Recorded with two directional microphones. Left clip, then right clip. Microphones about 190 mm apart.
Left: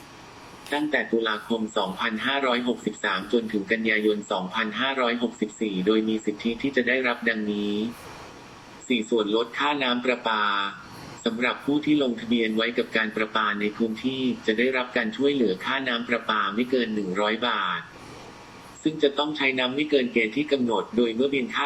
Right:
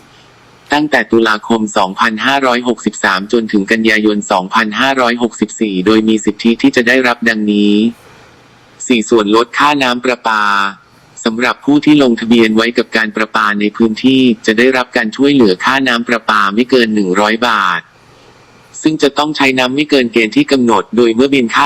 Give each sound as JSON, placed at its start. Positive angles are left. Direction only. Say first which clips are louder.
{"t": 0.7, "sound": "speech", "louder": "right 14 dB", "side_deg": -45}
{"t": 8.9, "sound": "speech", "louder": "right 14 dB", "side_deg": -45}